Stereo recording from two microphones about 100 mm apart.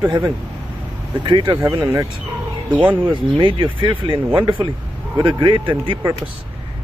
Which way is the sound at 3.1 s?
55° right (ahead or behind).